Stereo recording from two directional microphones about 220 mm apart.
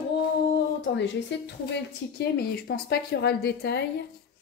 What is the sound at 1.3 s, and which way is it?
A woman's voice, 55° left (ahead or behind).